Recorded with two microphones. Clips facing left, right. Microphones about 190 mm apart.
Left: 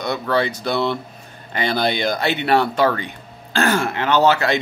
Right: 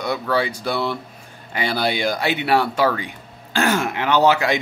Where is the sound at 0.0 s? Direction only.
10° right (ahead or behind).